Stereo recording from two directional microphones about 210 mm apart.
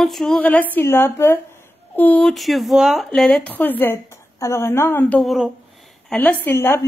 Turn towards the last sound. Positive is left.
turn(degrees=10)  # may be behind; listen again after turning